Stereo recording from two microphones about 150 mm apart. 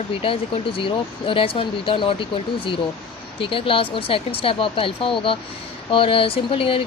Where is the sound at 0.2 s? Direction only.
35° left (ahead or behind).